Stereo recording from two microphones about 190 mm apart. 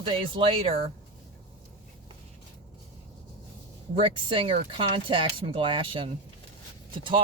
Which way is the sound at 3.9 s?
30° right (ahead or behind).